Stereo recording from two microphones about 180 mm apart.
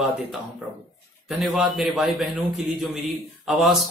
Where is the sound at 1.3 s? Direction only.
Centre (ahead or behind).